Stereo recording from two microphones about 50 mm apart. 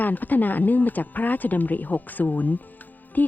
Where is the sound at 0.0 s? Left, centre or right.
Left.